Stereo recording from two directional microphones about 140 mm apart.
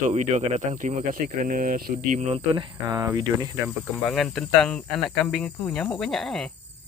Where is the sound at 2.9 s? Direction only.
25° right (ahead or behind).